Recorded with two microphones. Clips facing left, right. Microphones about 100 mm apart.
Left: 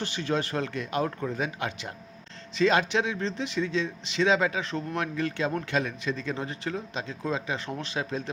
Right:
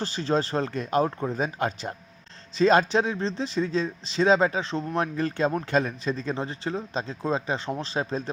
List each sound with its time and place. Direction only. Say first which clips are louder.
0.0 s speech: right 3 dB; 35° right (ahead or behind)